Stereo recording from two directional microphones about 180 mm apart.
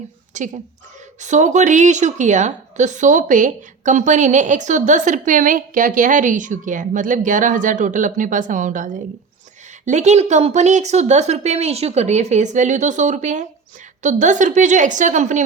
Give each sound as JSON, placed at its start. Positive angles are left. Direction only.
{"t": 0.3, "sound": "a woman's voice", "side_deg": -45}